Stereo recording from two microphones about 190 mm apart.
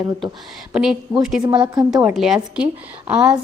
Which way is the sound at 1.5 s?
20° right (ahead or behind).